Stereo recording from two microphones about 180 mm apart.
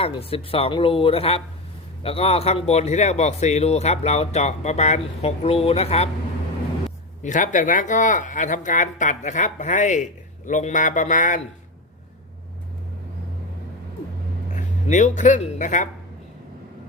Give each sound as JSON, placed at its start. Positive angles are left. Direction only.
{"t": 0.0, "sound": "a man's voice", "side_deg": 30}
{"t": 7.2, "sound": "speech", "side_deg": 45}
{"t": 14.5, "sound": "speech", "side_deg": 45}